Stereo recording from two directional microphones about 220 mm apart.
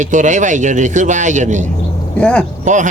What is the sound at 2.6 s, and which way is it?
Speech, 35° right (ahead or behind).